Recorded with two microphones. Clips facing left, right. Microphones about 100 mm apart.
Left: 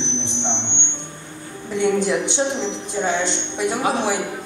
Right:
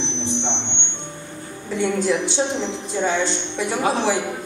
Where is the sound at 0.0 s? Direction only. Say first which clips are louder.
Right 1 dB; 20° left (ahead or behind).